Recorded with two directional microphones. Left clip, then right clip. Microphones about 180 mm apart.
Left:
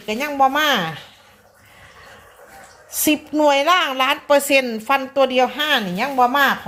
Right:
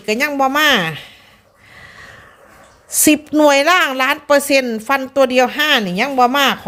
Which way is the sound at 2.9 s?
45° right (ahead or behind).